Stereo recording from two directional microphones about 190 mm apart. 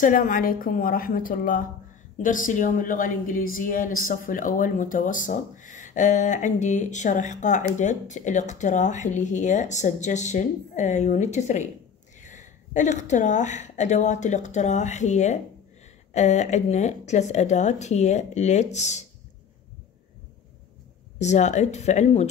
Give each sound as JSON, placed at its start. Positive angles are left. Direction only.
{"t": 0.0, "sound": "a woman's voice", "side_deg": 45}
{"t": 21.2, "sound": "speech", "side_deg": 40}